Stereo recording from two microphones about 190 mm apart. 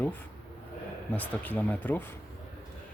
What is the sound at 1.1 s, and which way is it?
Speech, 10° left (ahead or behind).